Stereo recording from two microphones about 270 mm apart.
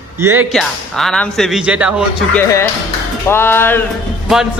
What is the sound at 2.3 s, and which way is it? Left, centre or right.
Speech, centre.